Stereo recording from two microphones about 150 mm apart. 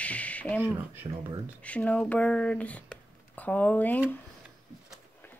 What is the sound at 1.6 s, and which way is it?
Speech, 10° left (ahead or behind).